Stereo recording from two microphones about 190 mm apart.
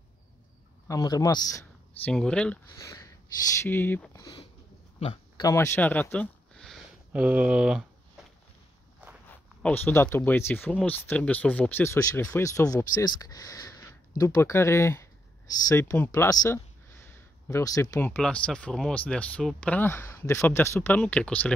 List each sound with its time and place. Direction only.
0.8 s a man's voice: 20° left (ahead or behind)
2.0 s speech: 5° left (ahead or behind)
2.7 s speech: 15° left (ahead or behind)
5.0 s a sound: 25° left (ahead or behind); by 8.3 s 5° right (ahead or behind)
9.3 s speech: 10° left (ahead or behind)
18.1 s speech: 5° left (ahead or behind)